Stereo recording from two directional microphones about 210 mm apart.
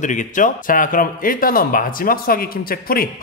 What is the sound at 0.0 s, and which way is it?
Speech, 35° left (ahead or behind).